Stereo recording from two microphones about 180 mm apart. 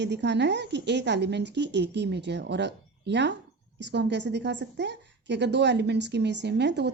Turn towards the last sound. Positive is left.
turn(degrees=-70)  # may be behind; listen again after turning